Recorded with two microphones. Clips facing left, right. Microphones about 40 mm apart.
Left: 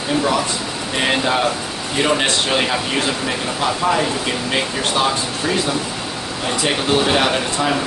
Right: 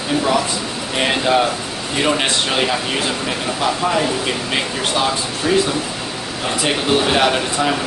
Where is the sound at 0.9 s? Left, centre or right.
Centre.